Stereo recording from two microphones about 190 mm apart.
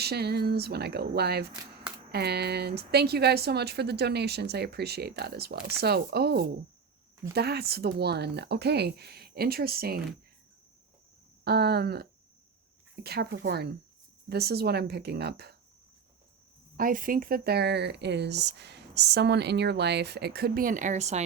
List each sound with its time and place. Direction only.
0.0 s speech: 60° right (ahead or behind)
11.4 s speech: 55° right (ahead or behind)
16.7 s speech: 45° right (ahead or behind)